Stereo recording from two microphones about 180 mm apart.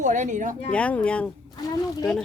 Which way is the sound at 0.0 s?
45° right (ahead or behind).